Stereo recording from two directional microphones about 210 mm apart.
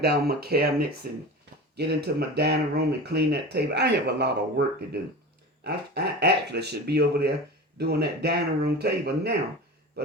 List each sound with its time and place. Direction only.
0.0 s speech: 45° right (ahead or behind)
5.6 s speech: 50° right (ahead or behind)